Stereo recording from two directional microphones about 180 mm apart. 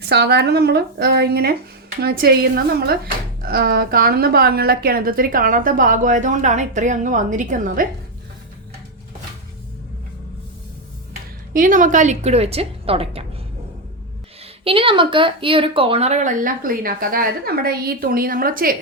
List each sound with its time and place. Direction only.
0.0 s a woman's voice: 65° right (ahead or behind); by 7.9 s 45° right (ahead or behind)
11.5 s a woman's voice: 50° right (ahead or behind); by 13.2 s 30° right (ahead or behind)
14.6 s a woman's voice: 30° right (ahead or behind); by 18.8 s 55° right (ahead or behind)